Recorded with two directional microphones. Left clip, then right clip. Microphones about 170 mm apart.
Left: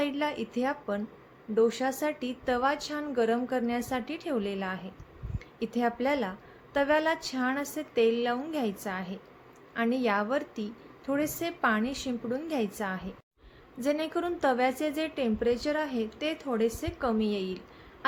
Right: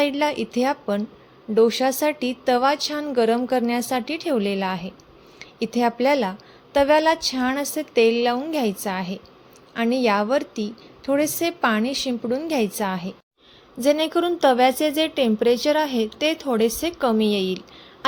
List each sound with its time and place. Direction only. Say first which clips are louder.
0.0 s a woman's voice: right 9 dB; 40° right (ahead or behind)